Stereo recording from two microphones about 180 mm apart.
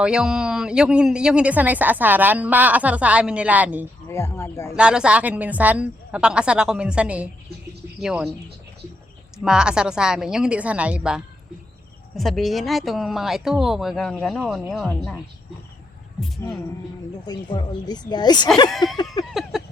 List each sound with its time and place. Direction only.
0.0 s speech: 5° right (ahead or behind)
4.1 s speech: 15° left (ahead or behind)
4.7 s a woman's voice: 5° right (ahead or behind)
9.4 s a woman's voice: 5° right (ahead or behind)
17.2 s speech: 20° left (ahead or behind)
19.3 s a woman's voice: centre (ahead or behind)